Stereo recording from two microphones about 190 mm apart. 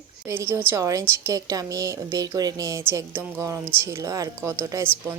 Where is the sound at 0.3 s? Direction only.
15° right (ahead or behind).